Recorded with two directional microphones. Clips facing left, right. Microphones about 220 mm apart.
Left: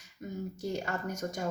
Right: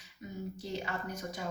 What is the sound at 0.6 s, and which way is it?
Speech, 45° left (ahead or behind).